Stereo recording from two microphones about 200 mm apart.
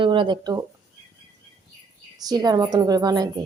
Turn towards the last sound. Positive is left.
turn(degrees=-20)  # may be behind; listen again after turning